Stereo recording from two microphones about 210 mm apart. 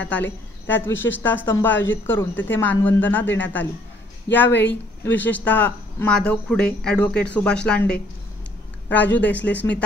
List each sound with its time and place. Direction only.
0.7 s a woman's voice: 10° left (ahead or behind)
0.9 s speech: 65° left (ahead or behind)
1.2 s a woman's voice: 10° left (ahead or behind)
9.1 s a woman's voice: 5° left (ahead or behind)